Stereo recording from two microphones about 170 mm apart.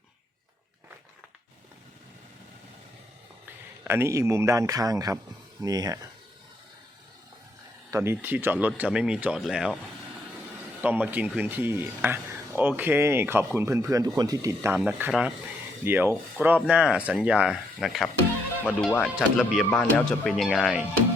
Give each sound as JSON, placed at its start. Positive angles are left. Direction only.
{"t": 3.8, "sound": "speech", "side_deg": -15}
{"t": 7.9, "sound": "speech", "side_deg": -15}
{"t": 10.8, "sound": "speech", "side_deg": -10}